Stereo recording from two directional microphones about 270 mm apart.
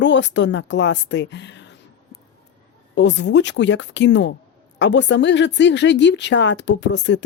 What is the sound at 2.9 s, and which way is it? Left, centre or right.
Speech, left.